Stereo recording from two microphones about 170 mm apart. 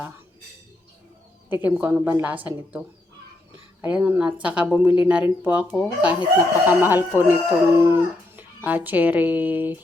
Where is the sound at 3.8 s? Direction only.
10° right (ahead or behind).